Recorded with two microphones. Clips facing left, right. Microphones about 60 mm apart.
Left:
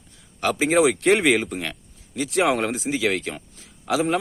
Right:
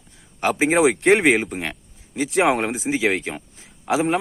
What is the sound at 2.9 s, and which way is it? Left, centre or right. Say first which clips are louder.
A man's voice: right 5 dB; right.